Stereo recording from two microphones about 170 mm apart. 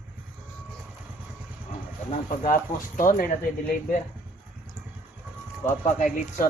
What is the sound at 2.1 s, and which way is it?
Speech, 50° left (ahead or behind).